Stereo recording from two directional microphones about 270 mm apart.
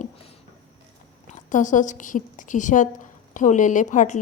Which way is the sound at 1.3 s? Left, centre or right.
Left.